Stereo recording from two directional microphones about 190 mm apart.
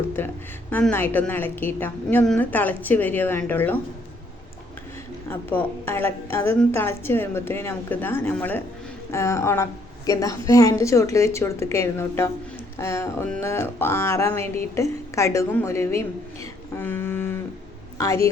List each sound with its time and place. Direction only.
0.2 s music: 10° left (ahead or behind)
5.3 s music: 10° left (ahead or behind)
17.9 s speech: 15° left (ahead or behind)